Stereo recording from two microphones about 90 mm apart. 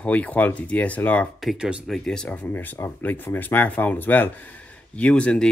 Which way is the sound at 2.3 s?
20° left (ahead or behind).